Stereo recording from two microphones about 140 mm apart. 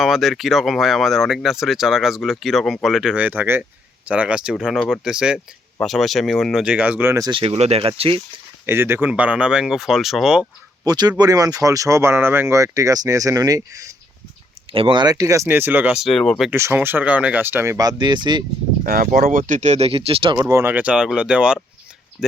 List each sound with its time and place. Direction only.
0.0 s speech: centre (ahead or behind)
7.2 s speech: 35° right (ahead or behind)
8.6 s speech: 15° right (ahead or behind)
10.8 s speech: 30° right (ahead or behind)
14.7 s speech: 40° right (ahead or behind); by 16.5 s 5° left (ahead or behind)
16.5 s speech: 15° right (ahead or behind); by 18.4 s 30° right (ahead or behind)
18.8 s speech: 85° right; by 20.3 s 40° right (ahead or behind)
20.3 s speech: 25° right (ahead or behind); by 21.6 s 5° right (ahead or behind)
22.2 s speech: 15° left (ahead or behind)